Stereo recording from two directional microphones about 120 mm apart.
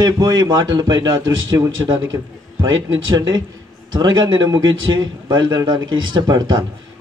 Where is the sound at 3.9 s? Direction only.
35° right (ahead or behind).